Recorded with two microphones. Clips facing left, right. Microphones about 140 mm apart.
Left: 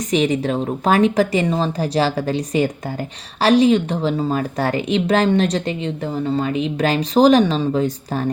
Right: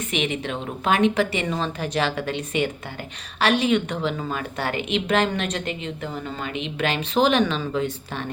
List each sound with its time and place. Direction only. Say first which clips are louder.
0.1 s speech: left 9 dB; 40° left (ahead or behind)